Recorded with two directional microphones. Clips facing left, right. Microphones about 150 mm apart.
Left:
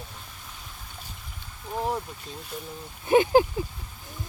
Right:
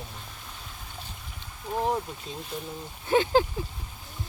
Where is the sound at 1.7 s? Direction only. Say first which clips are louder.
Right 2 dB; centre (ahead or behind).